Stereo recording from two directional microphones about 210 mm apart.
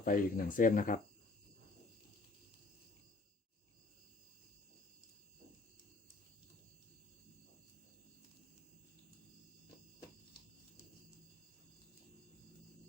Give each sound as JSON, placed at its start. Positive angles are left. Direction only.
{"t": 0.0, "sound": "speech", "side_deg": 40}